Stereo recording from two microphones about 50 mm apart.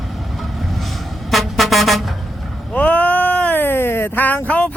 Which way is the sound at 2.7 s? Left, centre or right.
Left.